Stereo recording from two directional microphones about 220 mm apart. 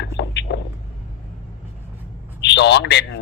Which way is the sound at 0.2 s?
50° left (ahead or behind).